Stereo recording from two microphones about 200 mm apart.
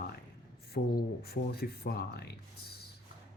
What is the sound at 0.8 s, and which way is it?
Speech, 45° left (ahead or behind).